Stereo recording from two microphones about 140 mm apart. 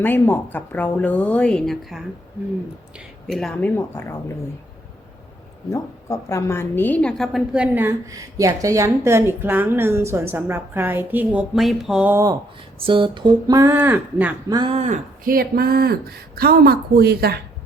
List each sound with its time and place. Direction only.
0.0 s a woman's voice: 15° left (ahead or behind)
3.2 s a woman's voice: 5° left (ahead or behind)
5.7 s a woman's voice: 20° left (ahead or behind); by 7.9 s 10° right (ahead or behind)
8.1 s a woman's voice: 25° right (ahead or behind); by 12.1 s 5° right (ahead or behind)
12.1 s speech: 25° right (ahead or behind)
12.8 s a sound: 35° right (ahead or behind)
13.6 s a woman's voice: 15° right (ahead or behind)
14.7 s speech: 55° right (ahead or behind)
15.2 s a woman's voice: 90° right